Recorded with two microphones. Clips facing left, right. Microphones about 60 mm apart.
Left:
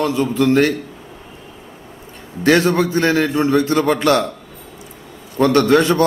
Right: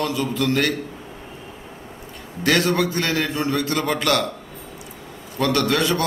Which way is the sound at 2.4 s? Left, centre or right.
Left.